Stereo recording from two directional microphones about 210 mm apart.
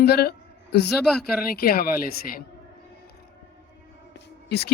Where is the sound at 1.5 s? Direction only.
45° left (ahead or behind).